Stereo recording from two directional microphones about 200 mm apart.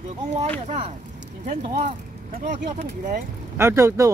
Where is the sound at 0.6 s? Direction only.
30° right (ahead or behind).